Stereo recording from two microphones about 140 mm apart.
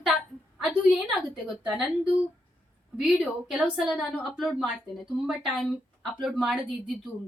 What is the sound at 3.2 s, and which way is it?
A woman's voice, 5° right (ahead or behind).